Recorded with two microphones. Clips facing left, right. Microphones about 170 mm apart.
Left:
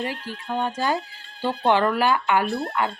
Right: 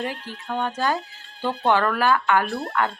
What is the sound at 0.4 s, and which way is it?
Speech, 10° left (ahead or behind).